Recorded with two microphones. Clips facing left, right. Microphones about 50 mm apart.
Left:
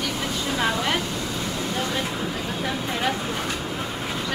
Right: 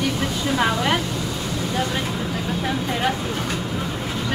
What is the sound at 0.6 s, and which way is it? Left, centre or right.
Speech, centre.